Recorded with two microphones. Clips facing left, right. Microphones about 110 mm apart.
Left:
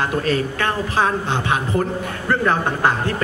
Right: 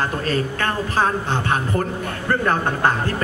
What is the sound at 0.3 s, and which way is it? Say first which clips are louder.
Speech: left 2 dB; 45° right (ahead or behind).